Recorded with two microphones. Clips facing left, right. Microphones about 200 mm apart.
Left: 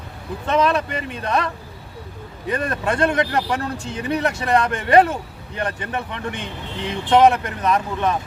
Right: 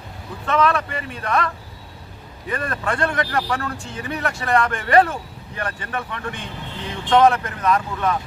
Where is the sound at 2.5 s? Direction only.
20° left (ahead or behind).